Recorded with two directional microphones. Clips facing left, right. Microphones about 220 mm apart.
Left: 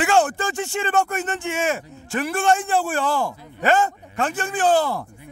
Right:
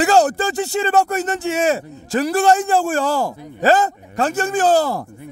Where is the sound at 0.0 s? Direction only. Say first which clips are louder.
Right 4 dB; 40° right (ahead or behind).